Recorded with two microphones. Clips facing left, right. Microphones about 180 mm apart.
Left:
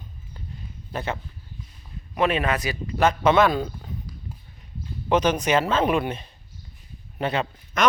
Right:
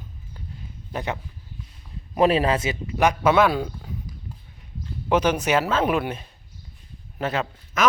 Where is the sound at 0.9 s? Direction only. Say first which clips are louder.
Right 1 dB; 15° right (ahead or behind).